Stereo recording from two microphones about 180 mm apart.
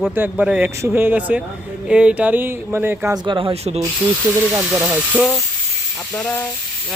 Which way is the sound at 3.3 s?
25° right (ahead or behind).